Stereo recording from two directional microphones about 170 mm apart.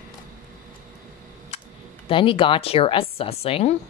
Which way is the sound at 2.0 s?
30° left (ahead or behind).